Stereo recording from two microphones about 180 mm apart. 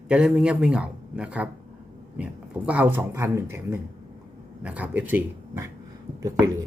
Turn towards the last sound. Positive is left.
turn(degrees=-20)  # may be behind; listen again after turning